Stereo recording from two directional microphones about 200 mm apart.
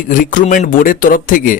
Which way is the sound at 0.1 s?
40° left (ahead or behind).